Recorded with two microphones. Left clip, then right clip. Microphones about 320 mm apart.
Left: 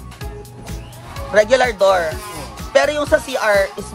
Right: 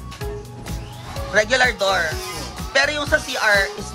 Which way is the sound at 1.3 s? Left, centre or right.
Centre.